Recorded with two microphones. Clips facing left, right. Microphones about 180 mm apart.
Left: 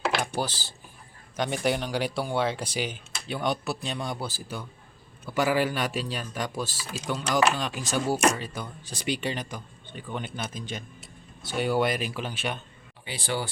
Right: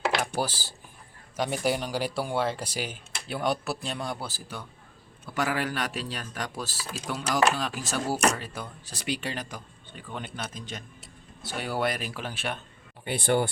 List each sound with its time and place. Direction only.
0.2 s speech: 10° right (ahead or behind)
13.1 s speech: 55° right (ahead or behind)